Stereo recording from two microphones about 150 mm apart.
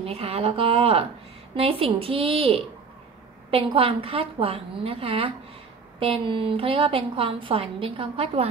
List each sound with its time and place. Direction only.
0.0 s a woman's voice: 40° right (ahead or behind)